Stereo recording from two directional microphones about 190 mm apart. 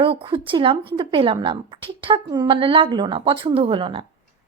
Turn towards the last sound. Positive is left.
turn(degrees=-25)  # may be behind; listen again after turning